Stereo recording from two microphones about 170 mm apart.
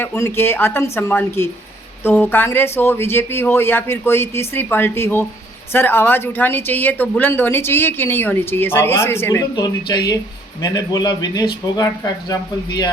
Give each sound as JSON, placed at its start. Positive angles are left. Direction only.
{"t": 0.0, "sound": "speech", "side_deg": 15}